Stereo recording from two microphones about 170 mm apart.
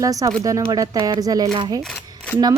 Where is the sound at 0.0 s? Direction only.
20° right (ahead or behind).